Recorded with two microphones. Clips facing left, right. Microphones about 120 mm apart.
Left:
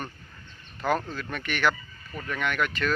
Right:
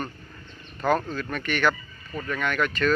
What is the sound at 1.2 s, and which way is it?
Speech, 15° left (ahead or behind).